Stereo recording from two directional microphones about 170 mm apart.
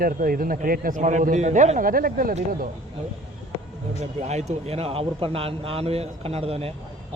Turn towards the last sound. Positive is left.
turn(degrees=-35)  # may be behind; listen again after turning